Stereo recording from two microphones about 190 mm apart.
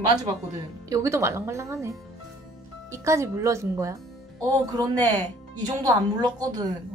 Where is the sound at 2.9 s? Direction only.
15° right (ahead or behind).